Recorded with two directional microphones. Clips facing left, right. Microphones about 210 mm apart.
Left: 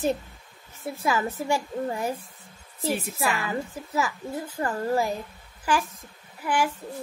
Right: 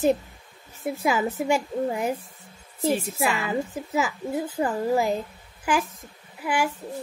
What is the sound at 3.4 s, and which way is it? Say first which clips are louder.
A woman's voice: right 3 dB; 20° right (ahead or behind).